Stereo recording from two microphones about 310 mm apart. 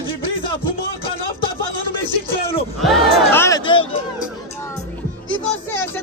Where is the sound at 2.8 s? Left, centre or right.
Centre.